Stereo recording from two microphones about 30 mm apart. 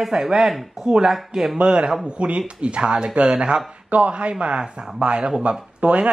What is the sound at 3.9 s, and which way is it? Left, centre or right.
Speech, right.